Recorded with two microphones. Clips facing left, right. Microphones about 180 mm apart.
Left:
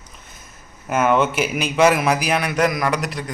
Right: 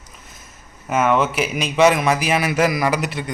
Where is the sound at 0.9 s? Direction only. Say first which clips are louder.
Even; centre (ahead or behind).